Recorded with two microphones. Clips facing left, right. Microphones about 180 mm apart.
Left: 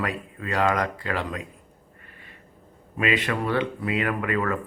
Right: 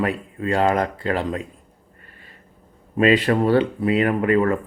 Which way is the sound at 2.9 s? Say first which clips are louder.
Right 8 dB; 35° right (ahead or behind).